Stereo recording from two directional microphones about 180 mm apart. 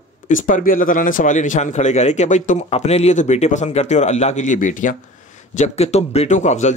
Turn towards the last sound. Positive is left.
turn(degrees=40)  # may be behind; listen again after turning